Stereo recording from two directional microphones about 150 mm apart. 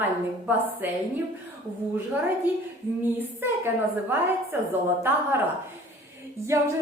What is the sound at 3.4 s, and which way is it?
A woman's voice, 15° right (ahead or behind).